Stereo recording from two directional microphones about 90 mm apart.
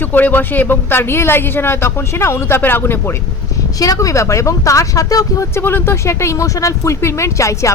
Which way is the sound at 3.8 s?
40° left (ahead or behind).